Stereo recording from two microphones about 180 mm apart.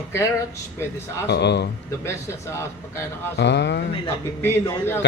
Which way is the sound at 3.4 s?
70° left (ahead or behind).